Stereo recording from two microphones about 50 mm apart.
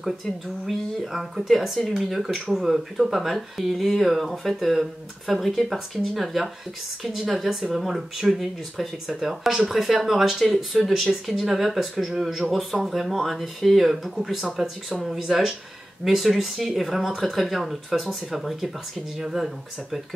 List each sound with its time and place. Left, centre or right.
0.2 s speech: centre